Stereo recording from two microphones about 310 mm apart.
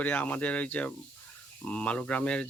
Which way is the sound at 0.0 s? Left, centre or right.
Centre.